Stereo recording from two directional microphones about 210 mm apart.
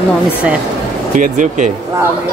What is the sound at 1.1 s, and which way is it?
Speech, 35° right (ahead or behind).